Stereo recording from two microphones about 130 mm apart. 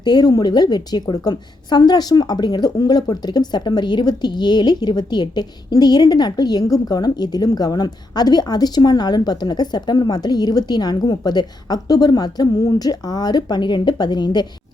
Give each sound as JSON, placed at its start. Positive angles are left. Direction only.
{"t": 0.0, "sound": "a woman's voice", "side_deg": 35}